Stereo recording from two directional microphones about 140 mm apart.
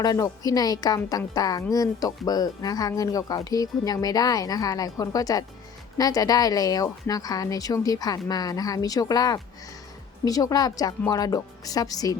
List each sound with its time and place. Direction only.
0.0 s speech: 25° left (ahead or behind)